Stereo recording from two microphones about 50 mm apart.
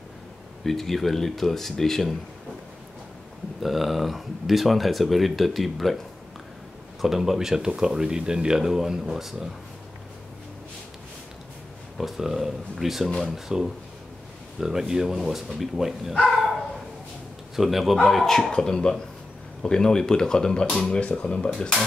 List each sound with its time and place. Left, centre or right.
0.7 s speech: centre
3.6 s speech: centre
7.0 s speech: centre
12.0 s speech: centre
17.6 s speech: centre